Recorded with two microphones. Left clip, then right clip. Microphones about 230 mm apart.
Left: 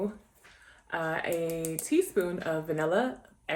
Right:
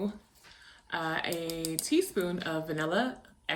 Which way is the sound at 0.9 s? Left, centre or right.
Centre.